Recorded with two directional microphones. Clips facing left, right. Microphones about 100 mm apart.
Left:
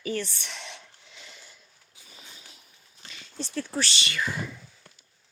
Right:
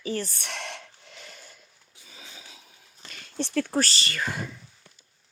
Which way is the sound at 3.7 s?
40° right (ahead or behind).